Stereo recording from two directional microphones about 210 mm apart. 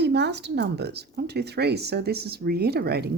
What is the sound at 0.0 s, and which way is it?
Speech, 55° right (ahead or behind).